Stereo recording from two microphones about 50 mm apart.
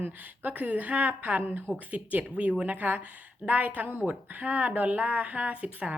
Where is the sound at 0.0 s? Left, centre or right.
Right.